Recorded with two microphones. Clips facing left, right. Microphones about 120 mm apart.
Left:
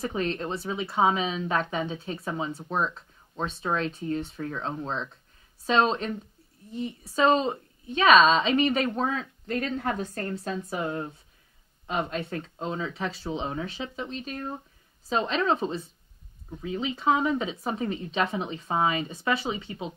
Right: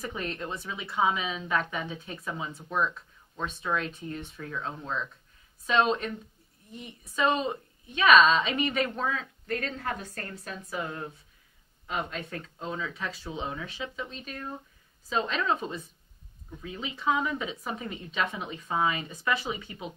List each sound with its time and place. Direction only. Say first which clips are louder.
0.0 s a woman's voice: left 6 dB; 30° left (ahead or behind)